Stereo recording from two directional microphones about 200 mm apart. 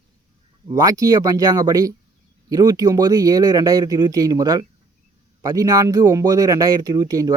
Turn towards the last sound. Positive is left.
turn(degrees=-15)  # may be behind; listen again after turning